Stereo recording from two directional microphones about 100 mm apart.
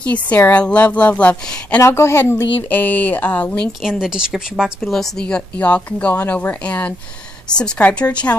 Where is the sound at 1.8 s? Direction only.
25° left (ahead or behind).